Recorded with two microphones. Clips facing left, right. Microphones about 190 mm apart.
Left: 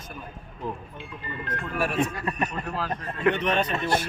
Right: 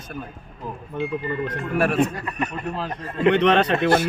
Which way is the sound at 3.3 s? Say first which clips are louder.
Right 8 dB; 80° right.